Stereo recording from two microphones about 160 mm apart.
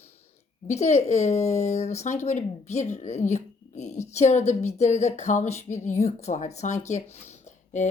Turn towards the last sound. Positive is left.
turn(degrees=45)  # may be behind; listen again after turning